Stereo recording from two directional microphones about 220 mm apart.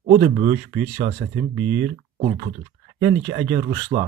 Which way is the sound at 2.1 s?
30° right (ahead or behind).